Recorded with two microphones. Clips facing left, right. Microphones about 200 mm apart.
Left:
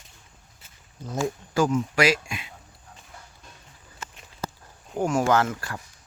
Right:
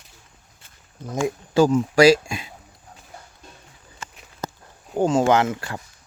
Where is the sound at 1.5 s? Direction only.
30° right (ahead or behind).